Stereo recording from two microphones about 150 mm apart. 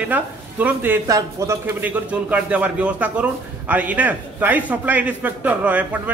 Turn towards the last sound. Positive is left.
turn(degrees=-10)  # may be behind; listen again after turning